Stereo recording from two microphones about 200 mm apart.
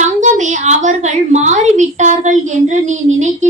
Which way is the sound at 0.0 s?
35° right (ahead or behind).